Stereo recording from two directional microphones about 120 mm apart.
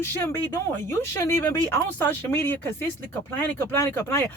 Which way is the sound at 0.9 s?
20° left (ahead or behind).